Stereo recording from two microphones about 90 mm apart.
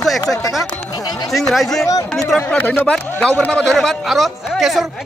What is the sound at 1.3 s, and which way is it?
Speech, centre (ahead or behind).